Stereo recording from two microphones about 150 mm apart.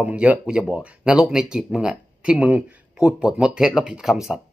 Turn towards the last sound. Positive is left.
turn(degrees=0)  # may be behind; listen again after turning